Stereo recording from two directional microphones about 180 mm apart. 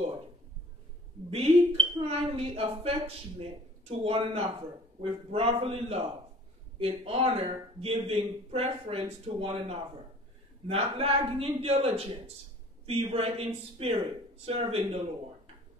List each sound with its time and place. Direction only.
1.3 s a man's voice: 30° right (ahead or behind)